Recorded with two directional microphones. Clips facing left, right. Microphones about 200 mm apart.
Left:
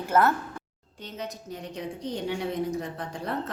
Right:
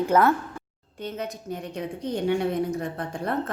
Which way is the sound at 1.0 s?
55° right (ahead or behind).